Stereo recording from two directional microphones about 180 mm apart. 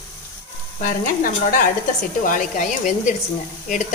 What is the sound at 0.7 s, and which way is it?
A woman's voice, 50° left (ahead or behind).